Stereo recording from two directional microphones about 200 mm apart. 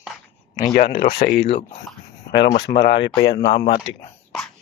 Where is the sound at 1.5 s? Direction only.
30° left (ahead or behind).